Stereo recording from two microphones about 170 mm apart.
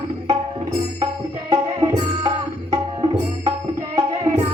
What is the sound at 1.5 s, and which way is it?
Music, 25° right (ahead or behind).